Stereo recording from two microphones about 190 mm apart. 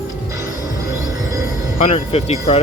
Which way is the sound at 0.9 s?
15° right (ahead or behind).